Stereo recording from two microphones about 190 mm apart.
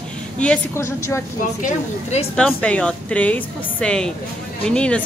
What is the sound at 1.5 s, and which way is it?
Speech, 40° left (ahead or behind).